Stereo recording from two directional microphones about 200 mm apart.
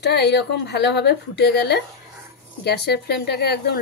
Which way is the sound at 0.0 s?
55° left (ahead or behind).